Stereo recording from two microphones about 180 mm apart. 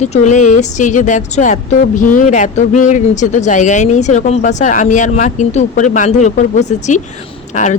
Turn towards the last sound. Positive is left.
turn(degrees=45)  # may be behind; listen again after turning